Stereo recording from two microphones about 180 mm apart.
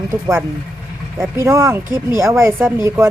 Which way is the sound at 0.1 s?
15° right (ahead or behind).